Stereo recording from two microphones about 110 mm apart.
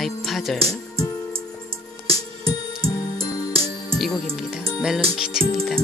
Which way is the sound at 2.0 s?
60° right (ahead or behind).